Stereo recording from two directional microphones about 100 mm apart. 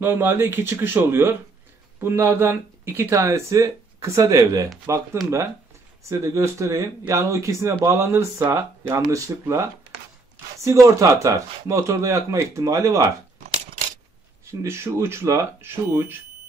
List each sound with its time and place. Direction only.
0.0 s speech: 20° right (ahead or behind)
11.0 s speech: 30° right (ahead or behind)
14.4 s speech: 30° right (ahead or behind)